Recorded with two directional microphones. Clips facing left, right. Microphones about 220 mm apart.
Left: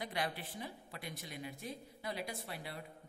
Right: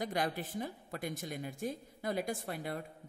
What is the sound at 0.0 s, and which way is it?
Speech, 45° right (ahead or behind).